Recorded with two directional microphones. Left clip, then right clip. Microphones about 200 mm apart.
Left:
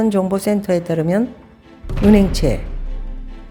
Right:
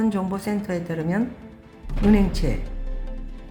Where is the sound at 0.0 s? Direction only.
40° left (ahead or behind).